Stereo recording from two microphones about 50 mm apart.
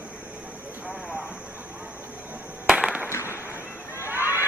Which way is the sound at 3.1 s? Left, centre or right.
Left.